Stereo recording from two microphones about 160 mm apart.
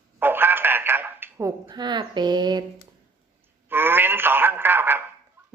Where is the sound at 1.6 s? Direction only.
25° right (ahead or behind).